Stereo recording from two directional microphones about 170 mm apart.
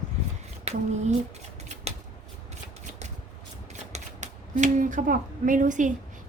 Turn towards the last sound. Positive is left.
turn(degrees=-50)  # may be behind; listen again after turning